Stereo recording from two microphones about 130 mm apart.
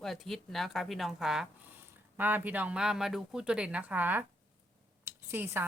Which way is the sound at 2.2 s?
15° right (ahead or behind).